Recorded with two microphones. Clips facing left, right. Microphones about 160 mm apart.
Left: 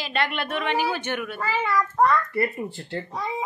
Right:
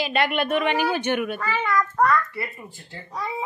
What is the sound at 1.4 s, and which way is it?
Speech, 30° left (ahead or behind).